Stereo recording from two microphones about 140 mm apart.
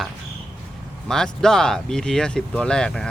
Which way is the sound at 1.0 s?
5° left (ahead or behind).